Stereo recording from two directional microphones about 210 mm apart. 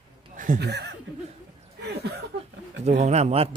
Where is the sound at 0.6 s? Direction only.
50° right (ahead or behind).